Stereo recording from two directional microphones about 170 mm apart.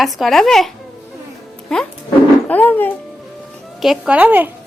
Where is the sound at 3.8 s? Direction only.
5° right (ahead or behind).